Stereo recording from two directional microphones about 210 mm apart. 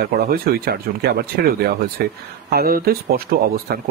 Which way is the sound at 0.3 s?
50° right (ahead or behind).